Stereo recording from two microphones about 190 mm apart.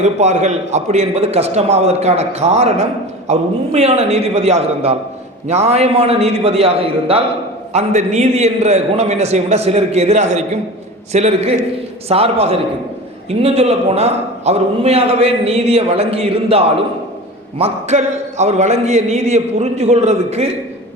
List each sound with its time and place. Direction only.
0.0 s a man's voice: 35° right (ahead or behind)